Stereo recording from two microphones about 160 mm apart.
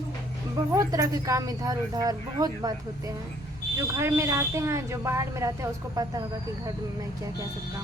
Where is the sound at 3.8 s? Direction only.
15° right (ahead or behind).